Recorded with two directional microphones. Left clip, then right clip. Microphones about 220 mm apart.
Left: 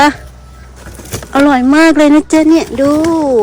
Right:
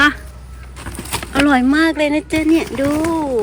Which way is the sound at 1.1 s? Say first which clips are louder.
Left 6 dB; 15° left (ahead or behind).